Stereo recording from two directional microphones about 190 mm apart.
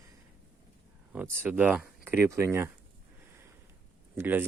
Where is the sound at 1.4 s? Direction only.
10° right (ahead or behind).